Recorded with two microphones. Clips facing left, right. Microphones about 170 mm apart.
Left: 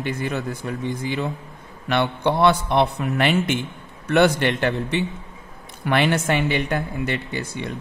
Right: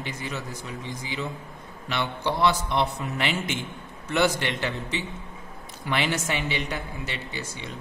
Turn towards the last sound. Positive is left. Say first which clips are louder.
# left 7 dB
turn(degrees=60)  # may be behind; listen again after turning